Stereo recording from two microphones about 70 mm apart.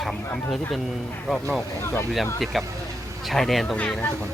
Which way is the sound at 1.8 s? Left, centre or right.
Left.